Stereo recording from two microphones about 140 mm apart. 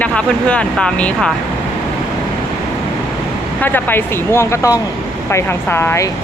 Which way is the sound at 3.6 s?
15° left (ahead or behind).